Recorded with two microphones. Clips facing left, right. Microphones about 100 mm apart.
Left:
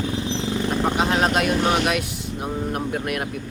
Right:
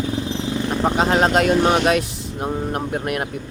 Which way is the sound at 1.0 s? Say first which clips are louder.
Right 5 dB; 30° right (ahead or behind).